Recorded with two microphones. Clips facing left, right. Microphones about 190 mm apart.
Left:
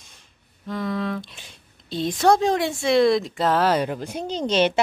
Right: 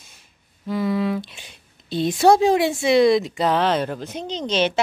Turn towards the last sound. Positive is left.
turn(degrees=10)  # may be behind; listen again after turning